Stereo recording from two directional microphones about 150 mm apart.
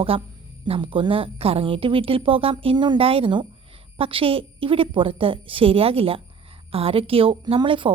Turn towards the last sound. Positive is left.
turn(degrees=-35)  # may be behind; listen again after turning